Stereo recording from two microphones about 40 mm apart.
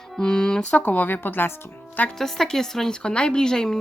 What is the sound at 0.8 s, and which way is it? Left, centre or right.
Speech, left.